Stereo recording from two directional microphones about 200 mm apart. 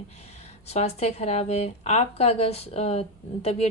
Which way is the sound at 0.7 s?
35° left (ahead or behind).